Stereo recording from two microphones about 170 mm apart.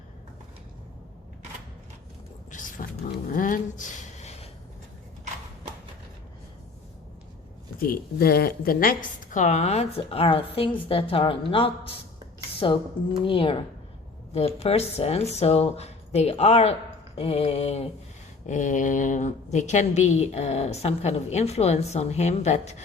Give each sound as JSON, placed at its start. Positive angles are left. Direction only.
{"t": 2.5, "sound": "a sound", "side_deg": 50}
{"t": 7.8, "sound": "a woman's voice", "side_deg": 60}
{"t": 9.3, "sound": "a woman's voice", "side_deg": 45}